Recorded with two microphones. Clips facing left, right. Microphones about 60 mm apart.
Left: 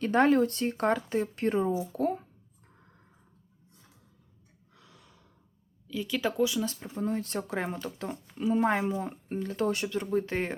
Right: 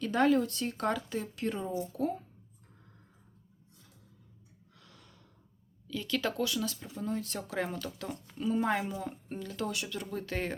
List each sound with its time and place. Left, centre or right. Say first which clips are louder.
0.0 s speech: left 4 dB; left
4.7 s gasp: left 2 dB; centre
5.9 s speech: left 2 dB; centre
6.7 s speech: left 4 dB; left